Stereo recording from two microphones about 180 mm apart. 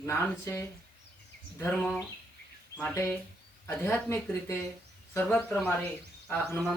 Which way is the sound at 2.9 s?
15° left (ahead or behind).